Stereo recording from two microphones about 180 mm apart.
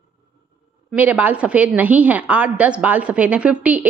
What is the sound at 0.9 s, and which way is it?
A woman's voice, 10° right (ahead or behind).